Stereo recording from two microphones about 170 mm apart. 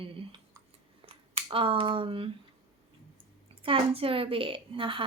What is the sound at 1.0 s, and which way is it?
Speech, 35° right (ahead or behind).